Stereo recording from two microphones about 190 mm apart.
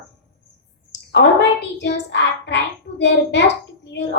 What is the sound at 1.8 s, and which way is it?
A woman's voice, 65° left (ahead or behind).